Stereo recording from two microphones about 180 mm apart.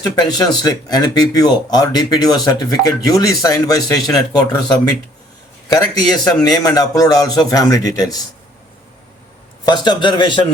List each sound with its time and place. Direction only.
0.0 s speech: 20° left (ahead or behind)
5.6 s speech: 20° left (ahead or behind)
9.6 s speech: 25° left (ahead or behind)